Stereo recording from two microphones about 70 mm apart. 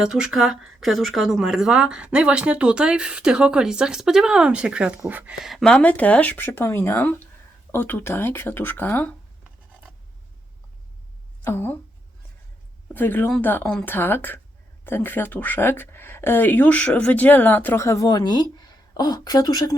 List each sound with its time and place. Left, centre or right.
0.0 s speech: centre
5.4 s speech: centre
5.6 s speech: left
6.5 s speech: left
11.4 s speech: left
12.9 s speech: left
17.7 s speech: left
18.1 s speech: left